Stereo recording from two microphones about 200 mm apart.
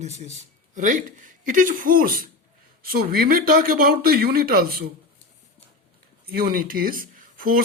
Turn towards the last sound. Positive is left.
turn(degrees=-45)  # may be behind; listen again after turning